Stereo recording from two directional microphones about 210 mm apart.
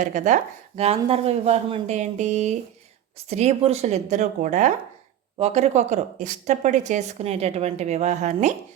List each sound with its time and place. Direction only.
0.0 s a woman's voice: 35° right (ahead or behind)